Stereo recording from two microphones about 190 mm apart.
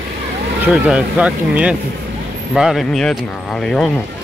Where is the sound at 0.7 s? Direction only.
5° right (ahead or behind).